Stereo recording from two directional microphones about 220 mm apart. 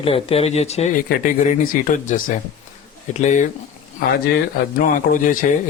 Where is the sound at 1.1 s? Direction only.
40° left (ahead or behind).